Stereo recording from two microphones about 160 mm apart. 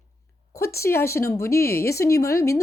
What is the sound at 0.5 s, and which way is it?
Speech, 20° left (ahead or behind).